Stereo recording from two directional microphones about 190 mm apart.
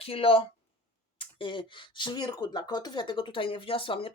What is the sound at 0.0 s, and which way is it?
Speech, 30° left (ahead or behind).